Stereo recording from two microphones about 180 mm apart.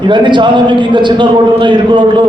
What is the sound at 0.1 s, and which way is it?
A man's voice, 25° right (ahead or behind).